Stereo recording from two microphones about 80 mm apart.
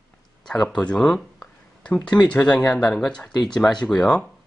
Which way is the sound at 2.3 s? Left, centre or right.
Centre.